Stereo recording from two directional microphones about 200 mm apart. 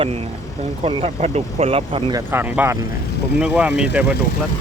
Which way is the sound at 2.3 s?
10° right (ahead or behind).